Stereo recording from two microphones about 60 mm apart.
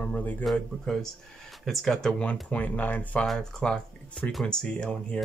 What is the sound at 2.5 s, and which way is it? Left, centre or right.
Speech, left.